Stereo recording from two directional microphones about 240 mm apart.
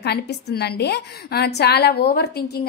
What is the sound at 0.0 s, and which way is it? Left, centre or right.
A woman's voice, left.